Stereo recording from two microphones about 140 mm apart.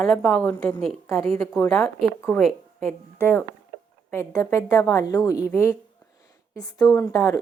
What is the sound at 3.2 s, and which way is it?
A woman's voice, 15° left (ahead or behind).